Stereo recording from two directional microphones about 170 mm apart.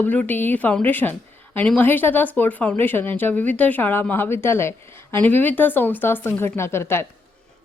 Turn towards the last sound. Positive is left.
turn(degrees=15)  # may be behind; listen again after turning